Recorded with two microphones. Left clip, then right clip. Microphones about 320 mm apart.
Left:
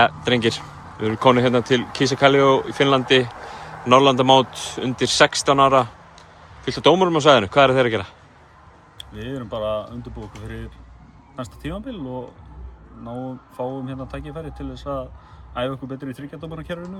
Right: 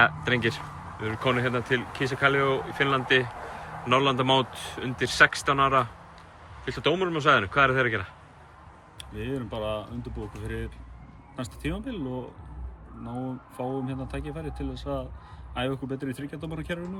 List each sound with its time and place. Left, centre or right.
0.0 s speech: centre
9.1 s speech: centre